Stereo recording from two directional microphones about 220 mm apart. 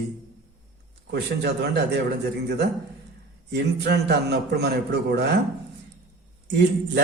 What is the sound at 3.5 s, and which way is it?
A man's voice, 50° right (ahead or behind).